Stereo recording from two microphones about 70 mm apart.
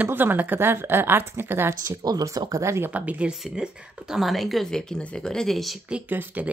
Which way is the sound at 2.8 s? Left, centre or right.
Right.